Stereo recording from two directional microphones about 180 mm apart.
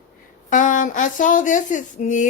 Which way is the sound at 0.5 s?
45° left (ahead or behind).